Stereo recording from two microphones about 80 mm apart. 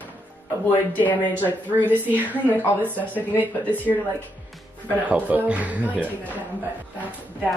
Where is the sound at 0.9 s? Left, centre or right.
Left.